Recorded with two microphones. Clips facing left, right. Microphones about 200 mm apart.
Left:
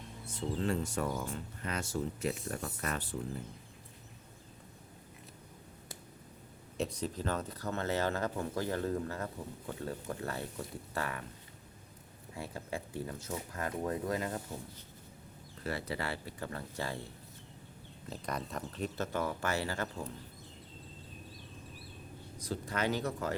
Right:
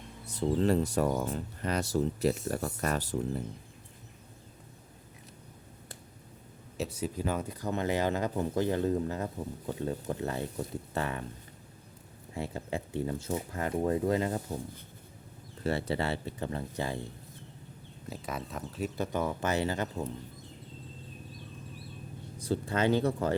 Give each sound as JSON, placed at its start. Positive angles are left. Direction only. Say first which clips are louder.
{"t": 0.3, "sound": "speech", "louder": "right 7 dB", "side_deg": -35}
{"t": 6.7, "sound": "speech", "louder": "right 2 dB", "side_deg": -5}
{"t": 12.4, "sound": "speech", "louder": "right 5 dB", "side_deg": -25}
{"t": 15.6, "sound": "speech", "louder": "right 7 dB", "side_deg": -25}
{"t": 18.1, "sound": "speech", "louder": "right 1 dB", "side_deg": -5}
{"t": 18.9, "sound": "speech", "louder": "right 4 dB", "side_deg": -20}
{"t": 22.4, "sound": "speech", "louder": "right 6 dB", "side_deg": -30}